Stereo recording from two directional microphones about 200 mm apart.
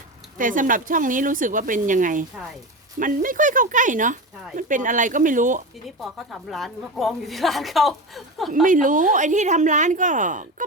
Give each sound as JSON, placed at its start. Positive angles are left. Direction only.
{"t": 0.3, "sound": "a woman's voice", "side_deg": -40}
{"t": 6.0, "sound": "a woman's voice", "side_deg": 0}
{"t": 8.6, "sound": "a woman's voice", "side_deg": -40}